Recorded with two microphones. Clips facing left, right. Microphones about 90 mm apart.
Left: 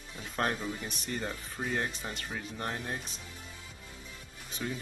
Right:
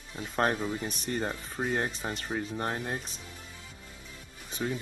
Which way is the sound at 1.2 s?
35° right (ahead or behind).